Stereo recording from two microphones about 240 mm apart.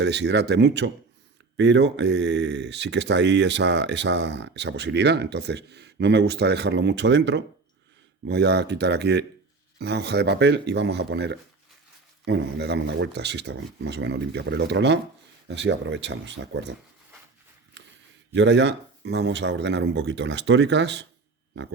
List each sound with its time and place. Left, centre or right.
0.0 s speech: right
18.3 s speech: right